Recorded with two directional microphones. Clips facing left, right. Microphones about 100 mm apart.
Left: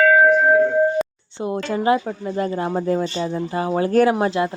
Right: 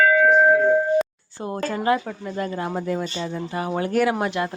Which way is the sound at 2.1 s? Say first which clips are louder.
Left 4 dB; 25° left (ahead or behind).